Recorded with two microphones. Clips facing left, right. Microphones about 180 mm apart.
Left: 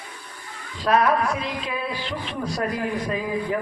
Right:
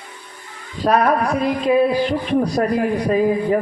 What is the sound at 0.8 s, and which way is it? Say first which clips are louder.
A man's voice: right 4 dB; 45° right (ahead or behind).